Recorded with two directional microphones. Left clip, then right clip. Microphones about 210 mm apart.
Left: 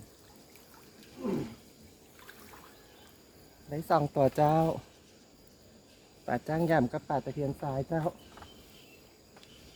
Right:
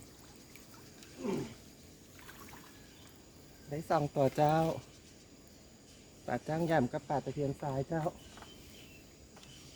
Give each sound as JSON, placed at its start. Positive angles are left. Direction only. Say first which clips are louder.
{"t": 3.7, "sound": "speech", "louder": "left 5 dB", "side_deg": 30}
{"t": 6.2, "sound": "speech", "louder": "left 4 dB", "side_deg": 30}